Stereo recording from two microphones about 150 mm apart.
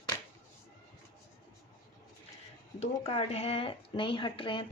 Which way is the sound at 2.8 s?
40° left (ahead or behind).